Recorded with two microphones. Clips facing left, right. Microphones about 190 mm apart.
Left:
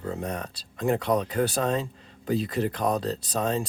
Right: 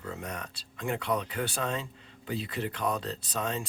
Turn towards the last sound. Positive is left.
turn(degrees=35)  # may be behind; listen again after turning